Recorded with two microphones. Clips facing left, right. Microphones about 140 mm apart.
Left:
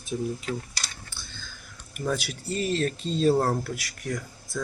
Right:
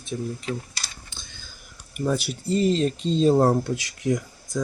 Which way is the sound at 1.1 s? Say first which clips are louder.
Left 1 dB; 20° right (ahead or behind).